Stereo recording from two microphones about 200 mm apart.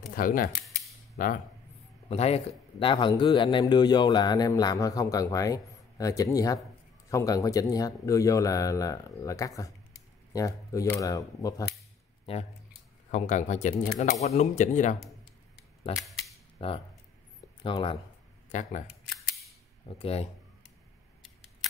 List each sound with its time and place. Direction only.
0.1 s speech: 45° left (ahead or behind)
2.0 s a man's voice: 30° left (ahead or behind)
13.1 s speech: 35° left (ahead or behind)
16.0 s cap gun: centre (ahead or behind)
16.5 s a man's voice: 25° left (ahead or behind)
18.5 s speech: 40° left (ahead or behind)
20.0 s speech: 30° left (ahead or behind)